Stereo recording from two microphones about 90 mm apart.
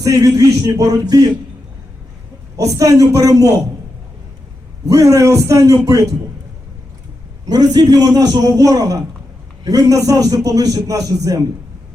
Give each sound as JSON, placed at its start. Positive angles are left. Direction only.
{"t": 0.0, "sound": "a man's voice", "side_deg": -40}
{"t": 2.6, "sound": "a man's voice", "side_deg": -40}
{"t": 4.9, "sound": "a man's voice", "side_deg": -35}
{"t": 7.4, "sound": "a man's voice", "side_deg": -45}